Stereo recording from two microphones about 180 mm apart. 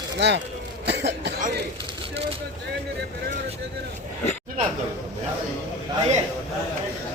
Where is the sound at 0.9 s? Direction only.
70° right (ahead or behind).